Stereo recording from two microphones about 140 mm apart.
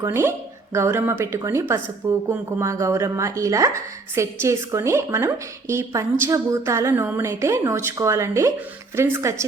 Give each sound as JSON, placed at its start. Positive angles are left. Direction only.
{"t": 0.0, "sound": "a woman's voice", "side_deg": -20}